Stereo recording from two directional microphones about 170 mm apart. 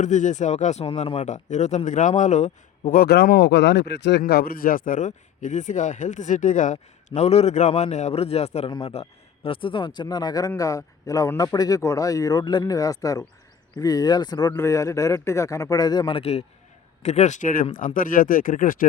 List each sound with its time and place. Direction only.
0.0 s speech: 45° left (ahead or behind); by 4.2 s 90° left
4.2 s speech: 65° left (ahead or behind)